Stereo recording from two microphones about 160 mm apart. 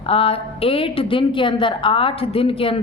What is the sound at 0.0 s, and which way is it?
A woman's voice, 35° left (ahead or behind).